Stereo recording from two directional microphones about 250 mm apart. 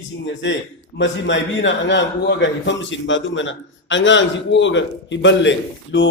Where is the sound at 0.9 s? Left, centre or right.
Left.